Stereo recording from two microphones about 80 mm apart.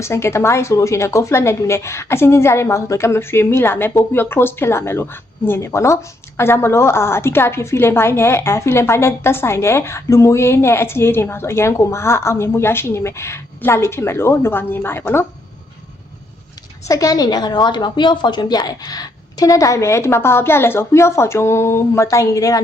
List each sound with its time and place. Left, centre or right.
0.0 s a woman's voice: left
16.9 s a woman's voice: left
22.0 s a woman's voice: left